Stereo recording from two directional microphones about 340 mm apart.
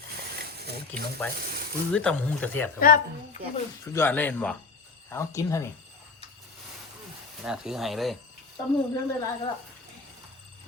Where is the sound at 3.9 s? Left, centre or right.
Centre.